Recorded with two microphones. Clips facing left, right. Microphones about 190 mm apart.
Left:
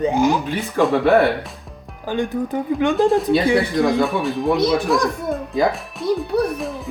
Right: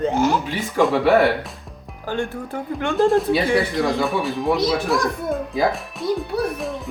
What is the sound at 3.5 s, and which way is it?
Speech, 15° left (ahead or behind).